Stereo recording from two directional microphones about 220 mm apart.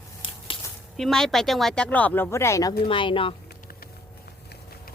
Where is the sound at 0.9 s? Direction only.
Centre (ahead or behind); by 3.3 s 25° left (ahead or behind).